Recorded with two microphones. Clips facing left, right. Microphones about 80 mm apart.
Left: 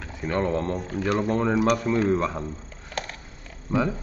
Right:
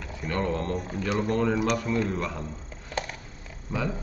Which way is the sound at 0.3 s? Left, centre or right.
Left.